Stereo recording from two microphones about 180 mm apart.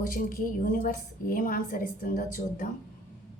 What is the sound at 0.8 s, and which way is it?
A woman's voice, 50° left (ahead or behind).